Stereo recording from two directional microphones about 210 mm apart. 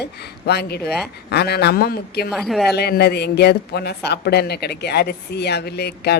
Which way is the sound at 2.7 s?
50° left (ahead or behind).